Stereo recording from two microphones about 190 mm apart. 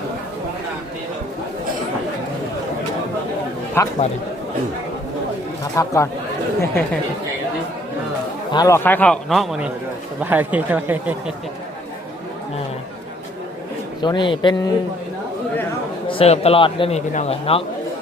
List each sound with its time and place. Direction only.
3.8 s a man's voice: 15° left (ahead or behind)
5.7 s a man's voice: 15° left (ahead or behind)
8.5 s a man's voice: 15° left (ahead or behind); by 11.1 s 10° right (ahead or behind)
14.0 s speech: 25° left (ahead or behind)
16.0 s a man's voice: 30° left (ahead or behind)